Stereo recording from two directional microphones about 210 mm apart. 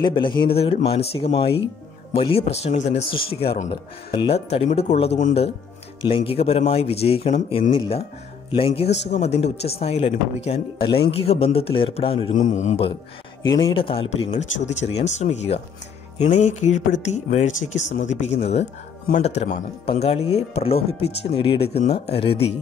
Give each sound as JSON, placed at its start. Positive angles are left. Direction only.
{"t": 0.0, "sound": "speech", "side_deg": 25}
{"t": 13.4, "sound": "speech", "side_deg": 20}